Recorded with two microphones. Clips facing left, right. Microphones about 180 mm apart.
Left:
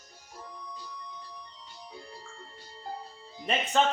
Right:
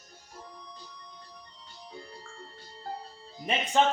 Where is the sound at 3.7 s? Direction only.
15° right (ahead or behind).